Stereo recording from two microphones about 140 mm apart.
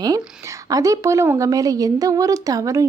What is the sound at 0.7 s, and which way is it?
A woman's voice, 25° right (ahead or behind).